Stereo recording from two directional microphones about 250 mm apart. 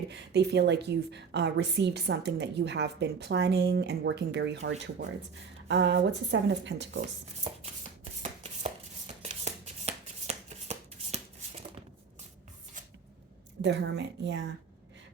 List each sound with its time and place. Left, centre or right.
0.1 s a woman's voice: right
7.4 s chopping: right
9.2 s shuffling cards: right
13.6 s a woman's voice: right